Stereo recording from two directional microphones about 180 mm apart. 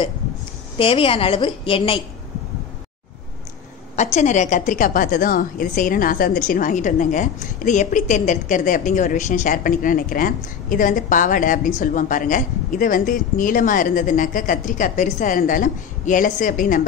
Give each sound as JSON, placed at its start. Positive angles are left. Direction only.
{"t": 0.7, "sound": "a woman's voice", "side_deg": 30}
{"t": 3.9, "sound": "a woman's voice", "side_deg": 40}